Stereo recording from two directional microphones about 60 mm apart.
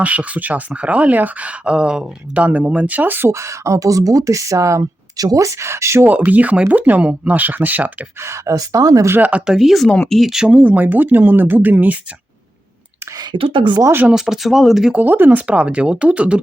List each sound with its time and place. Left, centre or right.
0.0 s speech: right
2.3 s speech: right
3.3 s speech: right
6.1 s speech: right
8.2 s speech: right
8.5 s speech: right
9.5 s speech: centre
10.5 s speech: right
14.1 s speech: centre
14.9 s speech: right